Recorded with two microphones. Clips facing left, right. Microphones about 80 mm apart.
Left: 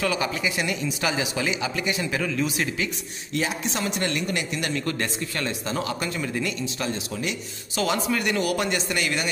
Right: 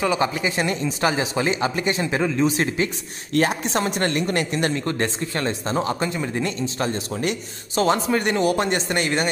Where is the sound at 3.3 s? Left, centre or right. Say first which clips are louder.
Right 6 dB; right.